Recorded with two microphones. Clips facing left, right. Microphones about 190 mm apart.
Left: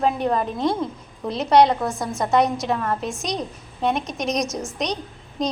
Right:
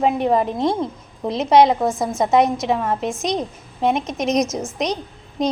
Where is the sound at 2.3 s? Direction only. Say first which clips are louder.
Right 2 dB; 20° right (ahead or behind).